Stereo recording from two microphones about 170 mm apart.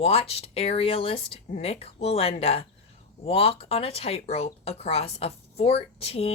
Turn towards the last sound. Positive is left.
turn(degrees=35)  # may be behind; listen again after turning